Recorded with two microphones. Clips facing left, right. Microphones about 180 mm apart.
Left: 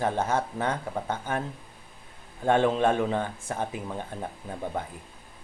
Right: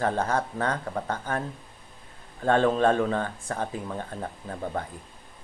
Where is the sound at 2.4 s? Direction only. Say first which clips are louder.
Right 1 dB; 15° left (ahead or behind).